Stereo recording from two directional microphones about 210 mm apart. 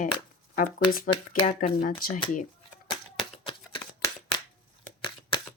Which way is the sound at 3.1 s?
25° left (ahead or behind).